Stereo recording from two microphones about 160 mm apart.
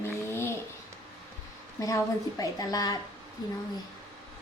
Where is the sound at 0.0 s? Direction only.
15° left (ahead or behind).